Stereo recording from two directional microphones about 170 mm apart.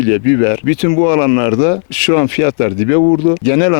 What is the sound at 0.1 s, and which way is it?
Speech, 10° left (ahead or behind).